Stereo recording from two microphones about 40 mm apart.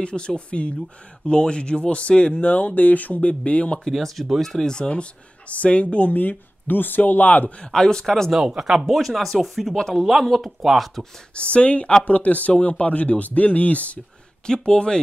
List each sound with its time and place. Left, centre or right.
0.0 s speech: left
2.4 s speech: left
3.8 s a man's voice: centre
4.6 s speech: left
7.6 s a man's voice: centre
8.3 s speech: centre
9.8 s a man's voice: centre
11.3 s speech: left
14.4 s speech: centre